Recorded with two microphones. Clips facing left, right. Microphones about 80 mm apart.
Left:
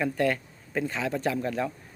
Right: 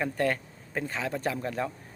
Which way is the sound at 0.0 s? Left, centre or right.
Right.